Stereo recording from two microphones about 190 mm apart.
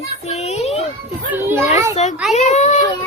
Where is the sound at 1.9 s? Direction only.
35° left (ahead or behind).